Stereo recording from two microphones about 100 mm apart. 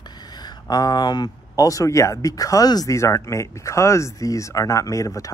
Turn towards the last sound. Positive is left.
turn(degrees=35)  # may be behind; listen again after turning